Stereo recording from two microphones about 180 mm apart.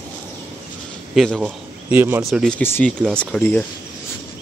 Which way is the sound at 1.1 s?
Centre (ahead or behind).